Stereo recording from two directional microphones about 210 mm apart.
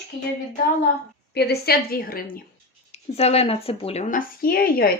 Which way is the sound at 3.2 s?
30° left (ahead or behind).